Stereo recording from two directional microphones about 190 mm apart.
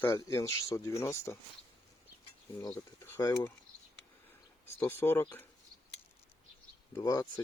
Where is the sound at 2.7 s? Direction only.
15° left (ahead or behind).